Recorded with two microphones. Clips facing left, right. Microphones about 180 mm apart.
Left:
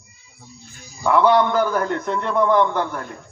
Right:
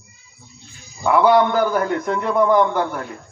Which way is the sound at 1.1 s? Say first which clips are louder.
Right 1 dB; 5° right (ahead or behind).